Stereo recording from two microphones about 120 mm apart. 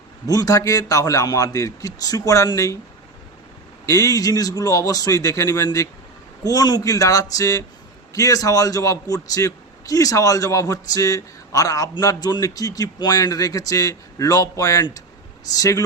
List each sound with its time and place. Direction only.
0.3 s a man's voice: 30° left (ahead or behind)
3.8 s a man's voice: 25° left (ahead or behind)